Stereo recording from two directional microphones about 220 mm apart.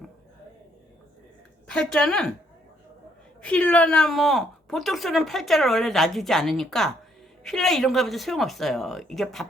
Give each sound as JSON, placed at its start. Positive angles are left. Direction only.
{"t": 1.6, "sound": "speech", "side_deg": 5}
{"t": 3.4, "sound": "speech", "side_deg": 5}